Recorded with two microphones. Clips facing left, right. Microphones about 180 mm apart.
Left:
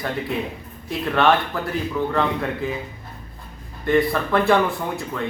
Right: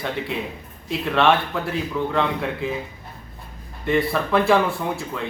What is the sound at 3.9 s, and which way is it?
Speech, centre (ahead or behind).